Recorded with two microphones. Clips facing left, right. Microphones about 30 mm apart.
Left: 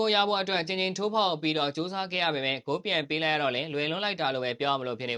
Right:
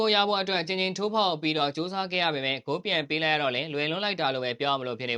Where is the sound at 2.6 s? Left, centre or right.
Centre.